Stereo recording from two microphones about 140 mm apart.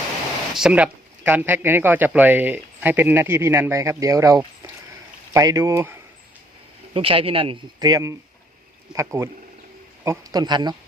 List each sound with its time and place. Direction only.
0.5 s speech: 5° right (ahead or behind)
6.9 s speech: 40° right (ahead or behind)
7.9 s speech: 25° right (ahead or behind)